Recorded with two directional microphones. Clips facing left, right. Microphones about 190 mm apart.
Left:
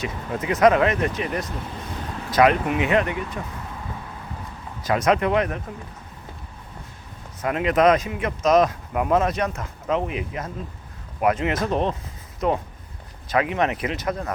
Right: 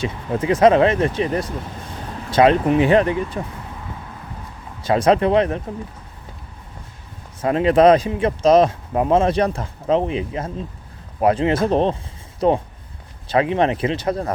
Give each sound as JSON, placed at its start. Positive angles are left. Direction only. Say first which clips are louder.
{"t": 0.0, "sound": "speech", "louder": "right 5 dB", "side_deg": -30}
{"t": 4.8, "sound": "speech", "louder": "right 4 dB", "side_deg": -30}
{"t": 7.4, "sound": "speech", "louder": "right 5 dB", "side_deg": -30}